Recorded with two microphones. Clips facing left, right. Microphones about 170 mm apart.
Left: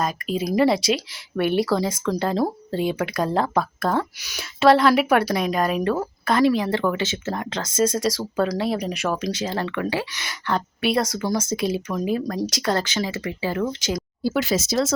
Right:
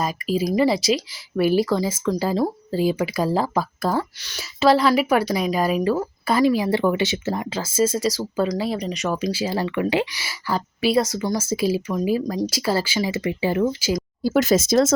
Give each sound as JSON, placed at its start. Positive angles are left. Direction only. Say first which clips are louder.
{"t": 0.0, "sound": "speech", "louder": "right 2 dB", "side_deg": 0}
{"t": 13.7, "sound": "speech", "louder": "right 3 dB", "side_deg": -5}
{"t": 14.2, "sound": "speech", "louder": "right 5 dB", "side_deg": -45}